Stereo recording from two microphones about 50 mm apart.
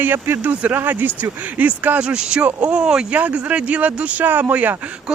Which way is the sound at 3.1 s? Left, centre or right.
Right.